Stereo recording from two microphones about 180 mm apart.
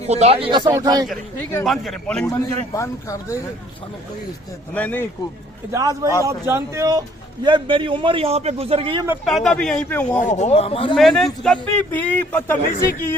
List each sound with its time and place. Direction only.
0.0 s a man's voice: 35° right (ahead or behind); by 1.0 s 20° right (ahead or behind)
1.6 s speech: centre (ahead or behind)
2.2 s a man's voice: 15° left (ahead or behind)
4.7 s a man's voice: 10° left (ahead or behind)
5.7 s a man's voice: 20° right (ahead or behind)
9.2 s speech: centre (ahead or behind)
10.2 s speech: 40° left (ahead or behind)
10.9 s a man's voice: centre (ahead or behind)